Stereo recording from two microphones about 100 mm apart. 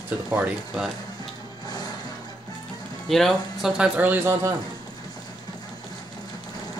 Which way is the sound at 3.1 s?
Centre (ahead or behind).